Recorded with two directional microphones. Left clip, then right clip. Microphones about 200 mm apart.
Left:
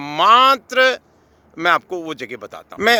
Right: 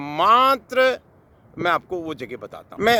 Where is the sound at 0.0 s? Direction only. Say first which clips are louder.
Left 4 dB; centre (ahead or behind).